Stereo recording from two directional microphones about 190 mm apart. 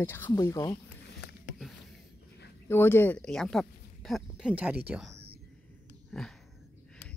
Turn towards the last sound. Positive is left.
turn(degrees=0)  # may be behind; listen again after turning